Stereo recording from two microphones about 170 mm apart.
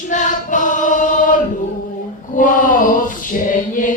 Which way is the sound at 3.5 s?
50° left (ahead or behind).